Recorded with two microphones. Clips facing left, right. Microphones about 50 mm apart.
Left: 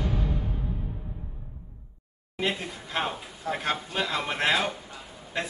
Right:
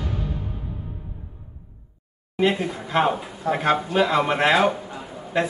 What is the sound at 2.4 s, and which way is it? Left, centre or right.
A man's voice, centre.